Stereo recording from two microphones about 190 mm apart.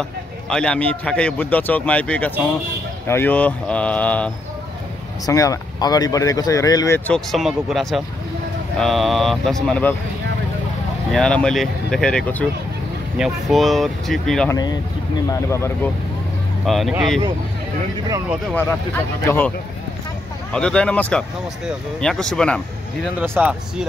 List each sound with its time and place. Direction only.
0.5 s a man's voice: 5° left (ahead or behind)
7.1 s a man's voice: centre (ahead or behind)
11.1 s speech: 5° left (ahead or behind)
14.5 s a man's voice: 20° left (ahead or behind)
16.6 s speech: centre (ahead or behind)
18.5 s a man's voice: 10° left (ahead or behind)
20.5 s speech: 5° left (ahead or behind)
23.1 s speech: 10° right (ahead or behind)